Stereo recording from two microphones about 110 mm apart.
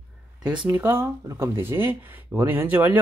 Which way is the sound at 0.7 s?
20° right (ahead or behind).